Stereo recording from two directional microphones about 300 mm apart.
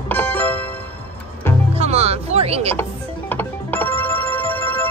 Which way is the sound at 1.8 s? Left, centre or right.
Right.